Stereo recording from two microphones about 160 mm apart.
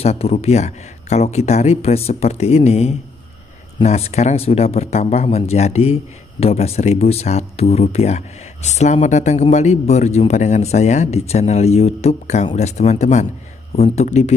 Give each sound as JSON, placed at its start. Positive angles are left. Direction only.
{"t": 0.0, "sound": "a man's voice", "side_deg": 40}